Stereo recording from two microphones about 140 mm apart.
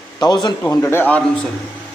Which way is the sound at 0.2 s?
30° left (ahead or behind).